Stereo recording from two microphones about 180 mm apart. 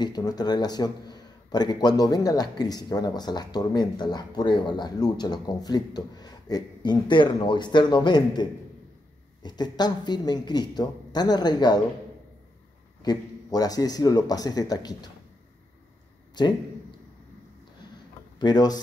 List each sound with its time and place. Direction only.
0.0 s a man's voice: 20° left (ahead or behind)
13.0 s a man's voice: 20° left (ahead or behind)
16.4 s a man's voice: 25° left (ahead or behind)
18.4 s a man's voice: 20° left (ahead or behind)